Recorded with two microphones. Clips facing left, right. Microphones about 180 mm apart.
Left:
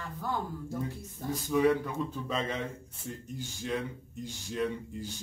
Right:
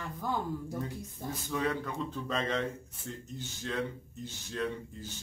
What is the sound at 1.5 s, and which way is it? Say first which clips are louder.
Speech: left 7 dB; 10° left (ahead or behind).